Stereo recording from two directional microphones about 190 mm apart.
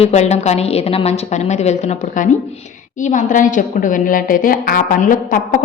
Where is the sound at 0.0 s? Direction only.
35° left (ahead or behind).